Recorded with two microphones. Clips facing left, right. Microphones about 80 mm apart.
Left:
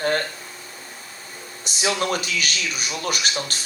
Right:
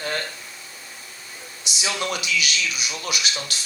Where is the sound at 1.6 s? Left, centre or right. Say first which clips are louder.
Left 4 dB; left.